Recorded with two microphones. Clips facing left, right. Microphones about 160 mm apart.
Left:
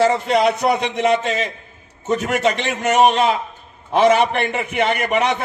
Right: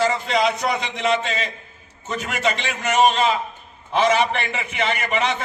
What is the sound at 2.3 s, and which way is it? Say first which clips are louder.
A man's voice: left 5 dB; 55° left (ahead or behind).